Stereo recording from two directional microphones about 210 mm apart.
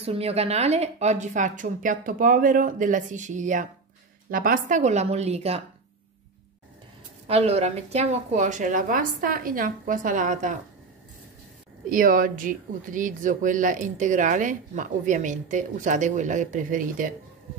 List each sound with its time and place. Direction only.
0.0 s speech: 30° right (ahead or behind)
7.2 s speech: 30° right (ahead or behind)
11.9 s speech: 40° right (ahead or behind)